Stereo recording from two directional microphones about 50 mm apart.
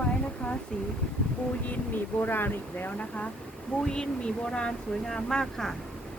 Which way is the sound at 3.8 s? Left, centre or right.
Centre.